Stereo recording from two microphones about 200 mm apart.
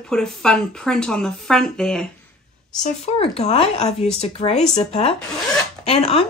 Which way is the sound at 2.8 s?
30° left (ahead or behind).